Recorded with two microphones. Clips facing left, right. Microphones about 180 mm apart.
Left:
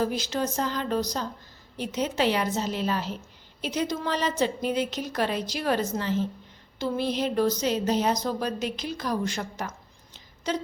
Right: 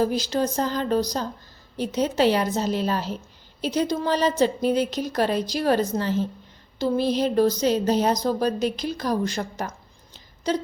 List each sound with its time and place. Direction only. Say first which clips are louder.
0.0 s speech: right 4 dB; 35° right (ahead or behind)